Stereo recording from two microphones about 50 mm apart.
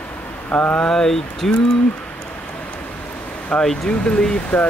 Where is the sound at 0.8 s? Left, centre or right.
Centre.